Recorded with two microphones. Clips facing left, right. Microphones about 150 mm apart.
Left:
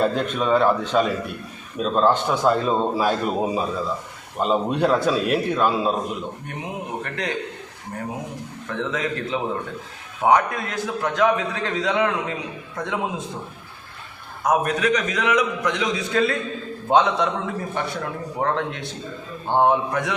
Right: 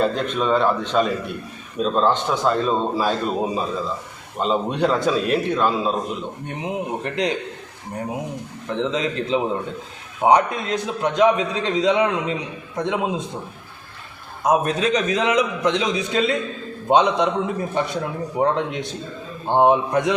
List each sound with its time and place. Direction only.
0.2 s a man's voice: 5° left (ahead or behind)
6.5 s a man's voice: 20° right (ahead or behind)
8.6 s a man's voice: 20° right (ahead or behind)
14.4 s a man's voice: 20° right (ahead or behind)